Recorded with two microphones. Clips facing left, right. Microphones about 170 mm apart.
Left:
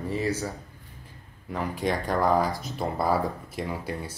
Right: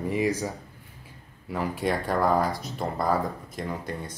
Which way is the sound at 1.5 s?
5° right (ahead or behind).